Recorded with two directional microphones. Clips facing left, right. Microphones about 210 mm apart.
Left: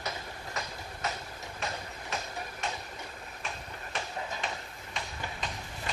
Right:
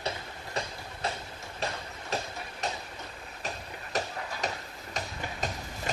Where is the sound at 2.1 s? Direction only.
35° right (ahead or behind).